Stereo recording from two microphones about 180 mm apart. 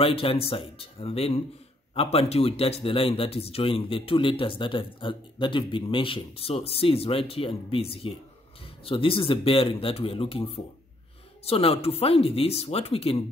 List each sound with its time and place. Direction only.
0.0 s a man's voice: 30° left (ahead or behind)